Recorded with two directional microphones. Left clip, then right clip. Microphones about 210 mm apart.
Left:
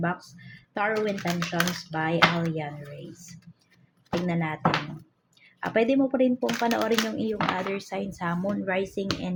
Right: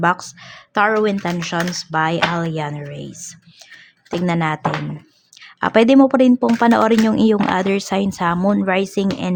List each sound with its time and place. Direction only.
0.0 s speech: 50° right (ahead or behind)
4.3 s speech: 50° right (ahead or behind)